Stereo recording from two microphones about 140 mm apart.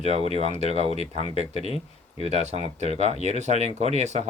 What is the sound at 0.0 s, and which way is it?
Speech, 50° right (ahead or behind).